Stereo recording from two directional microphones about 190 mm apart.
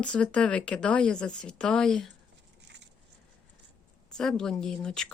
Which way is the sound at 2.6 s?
65° right (ahead or behind).